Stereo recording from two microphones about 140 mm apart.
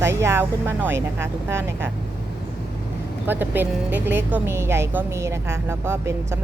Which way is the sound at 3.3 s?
15° right (ahead or behind).